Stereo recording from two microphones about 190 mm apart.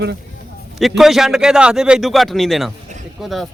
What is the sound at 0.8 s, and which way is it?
A man's voice, centre (ahead or behind).